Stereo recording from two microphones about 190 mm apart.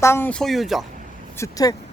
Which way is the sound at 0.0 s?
10° left (ahead or behind).